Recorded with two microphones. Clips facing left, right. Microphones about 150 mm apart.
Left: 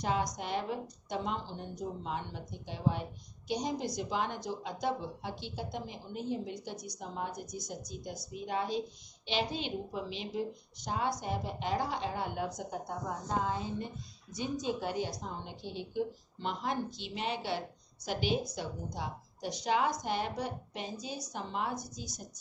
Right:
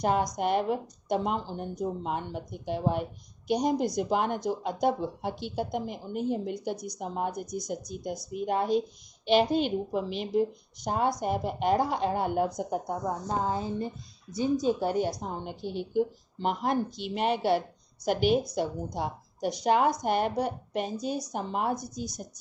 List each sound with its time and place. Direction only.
0.0 s a woman's voice: 55° right (ahead or behind)
13.4 s a woman's voice: 40° right (ahead or behind)